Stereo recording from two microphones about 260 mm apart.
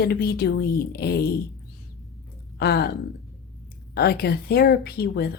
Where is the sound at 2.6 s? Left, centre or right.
Left.